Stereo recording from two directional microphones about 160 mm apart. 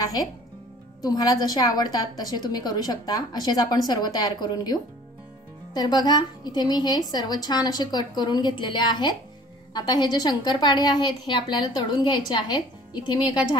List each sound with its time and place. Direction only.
1.0 s a woman's voice: 25° left (ahead or behind)